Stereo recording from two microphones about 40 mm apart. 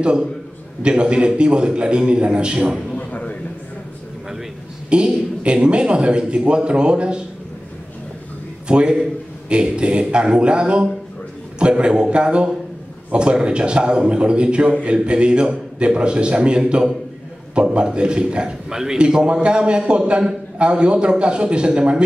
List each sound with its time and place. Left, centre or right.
0.8 s a man's voice: right
3.0 s a sound: left
4.8 s a man's voice: right
8.6 s a man's voice: right
18.7 s a man's voice: centre
18.9 s a man's voice: right